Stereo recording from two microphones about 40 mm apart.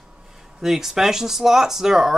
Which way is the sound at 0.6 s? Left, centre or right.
Centre.